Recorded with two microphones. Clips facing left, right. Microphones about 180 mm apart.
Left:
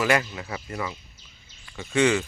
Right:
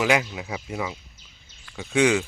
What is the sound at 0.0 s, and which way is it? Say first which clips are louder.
Speech: right 1 dB; 10° right (ahead or behind).